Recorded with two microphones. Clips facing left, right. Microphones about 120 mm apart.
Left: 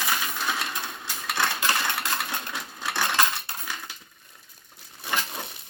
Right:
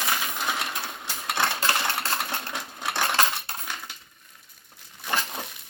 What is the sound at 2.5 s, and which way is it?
Coin, 20° right (ahead or behind).